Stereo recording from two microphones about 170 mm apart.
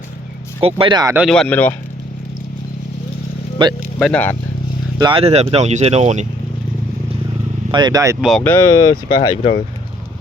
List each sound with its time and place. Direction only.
0.6 s speech: 30° right (ahead or behind)
1.3 s speech: 5° left (ahead or behind)
3.6 s speech: 30° right (ahead or behind)
3.9 s speech: 5° left (ahead or behind)
4.9 s speech: 30° right (ahead or behind)
7.7 s speech: 25° right (ahead or behind)
8.2 s speech: centre (ahead or behind)
8.4 s speech: 20° left (ahead or behind)